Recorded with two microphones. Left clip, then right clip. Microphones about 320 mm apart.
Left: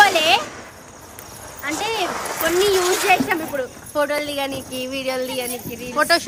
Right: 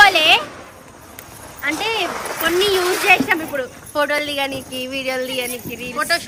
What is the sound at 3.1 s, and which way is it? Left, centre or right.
Speech, centre.